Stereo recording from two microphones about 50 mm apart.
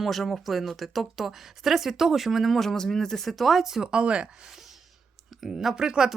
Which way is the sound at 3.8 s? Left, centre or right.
Centre.